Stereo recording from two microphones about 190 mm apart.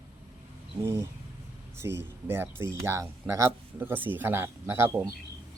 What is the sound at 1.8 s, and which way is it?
Speech, 15° right (ahead or behind).